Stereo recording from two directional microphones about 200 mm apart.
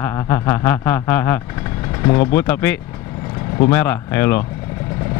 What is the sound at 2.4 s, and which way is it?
Speech, 10° left (ahead or behind).